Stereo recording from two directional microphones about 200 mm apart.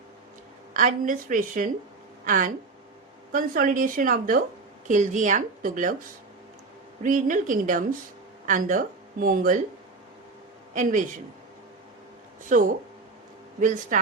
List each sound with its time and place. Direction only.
0.7 s a woman's voice: 40° right (ahead or behind)
12.5 s a woman's voice: 40° right (ahead or behind)